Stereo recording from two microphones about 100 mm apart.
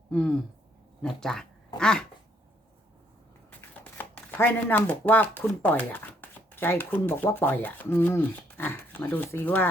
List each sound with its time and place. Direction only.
0.1 s a sound: 10° left (ahead or behind)
1.0 s speech: 5° left (ahead or behind)
3.9 s speech: 20° left (ahead or behind)